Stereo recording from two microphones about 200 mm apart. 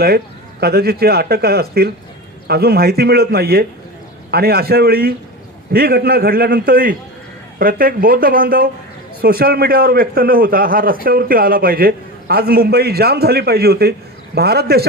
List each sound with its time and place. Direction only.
0.6 s a man's voice: 50° right (ahead or behind)